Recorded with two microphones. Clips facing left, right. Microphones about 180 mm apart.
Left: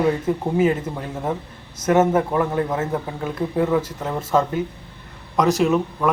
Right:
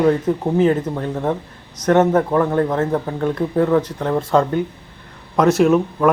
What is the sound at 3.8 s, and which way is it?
Speech, 5° left (ahead or behind).